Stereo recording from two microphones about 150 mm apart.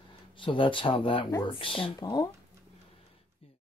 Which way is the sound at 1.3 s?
15° left (ahead or behind).